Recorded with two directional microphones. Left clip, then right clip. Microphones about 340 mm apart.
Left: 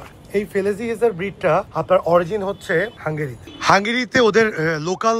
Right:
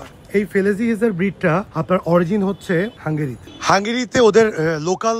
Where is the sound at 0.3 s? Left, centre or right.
Centre.